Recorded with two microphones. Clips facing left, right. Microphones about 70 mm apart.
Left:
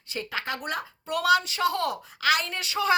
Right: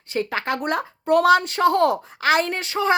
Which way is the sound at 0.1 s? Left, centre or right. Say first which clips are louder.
Right 8 dB; right.